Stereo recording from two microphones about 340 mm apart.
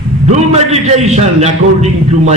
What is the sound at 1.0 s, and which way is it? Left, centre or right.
Speech, centre.